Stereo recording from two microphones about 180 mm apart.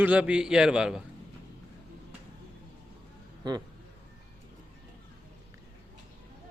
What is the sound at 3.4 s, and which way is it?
Speech, 20° right (ahead or behind).